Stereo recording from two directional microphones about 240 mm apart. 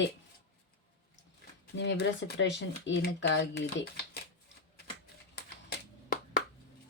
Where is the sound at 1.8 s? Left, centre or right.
Left.